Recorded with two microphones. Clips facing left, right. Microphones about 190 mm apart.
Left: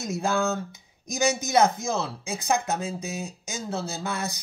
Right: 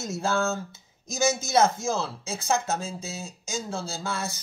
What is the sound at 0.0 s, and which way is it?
A man's voice, 15° left (ahead or behind).